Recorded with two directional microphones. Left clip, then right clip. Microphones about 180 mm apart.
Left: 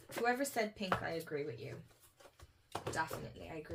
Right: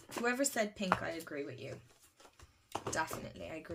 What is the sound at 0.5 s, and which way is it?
Speech, 40° right (ahead or behind).